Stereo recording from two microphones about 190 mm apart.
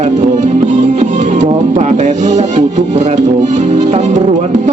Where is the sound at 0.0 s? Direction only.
40° right (ahead or behind).